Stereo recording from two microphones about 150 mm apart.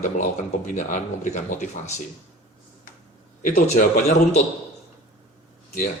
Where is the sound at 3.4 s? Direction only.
55° left (ahead or behind).